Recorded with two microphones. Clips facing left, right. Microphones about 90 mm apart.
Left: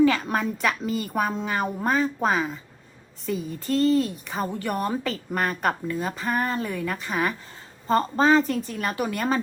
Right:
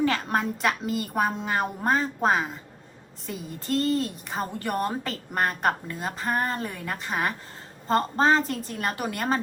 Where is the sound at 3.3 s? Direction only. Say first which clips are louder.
Left 3 dB; 40° right (ahead or behind).